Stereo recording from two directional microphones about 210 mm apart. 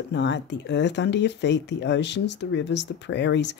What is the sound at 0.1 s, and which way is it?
Speech, 60° left (ahead or behind).